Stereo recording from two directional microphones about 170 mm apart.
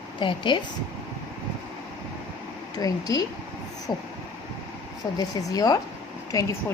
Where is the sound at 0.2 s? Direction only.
30° left (ahead or behind).